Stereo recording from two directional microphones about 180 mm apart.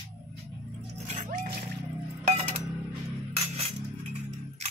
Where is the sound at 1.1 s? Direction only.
45° right (ahead or behind).